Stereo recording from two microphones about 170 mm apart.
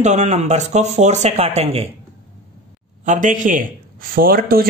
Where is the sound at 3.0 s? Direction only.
50° right (ahead or behind).